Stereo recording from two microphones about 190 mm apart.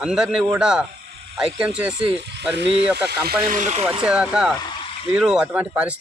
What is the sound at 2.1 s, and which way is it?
Speech, 65° right (ahead or behind).